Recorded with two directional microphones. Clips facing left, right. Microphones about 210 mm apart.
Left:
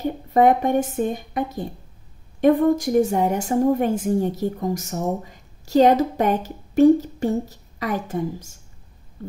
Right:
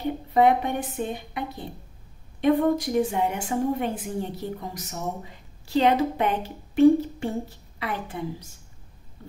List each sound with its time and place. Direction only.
0.3 s a woman's voice: 45° left (ahead or behind)